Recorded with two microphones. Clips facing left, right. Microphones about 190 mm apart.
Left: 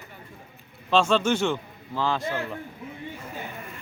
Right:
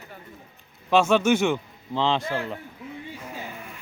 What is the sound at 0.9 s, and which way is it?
Speech, 5° right (ahead or behind).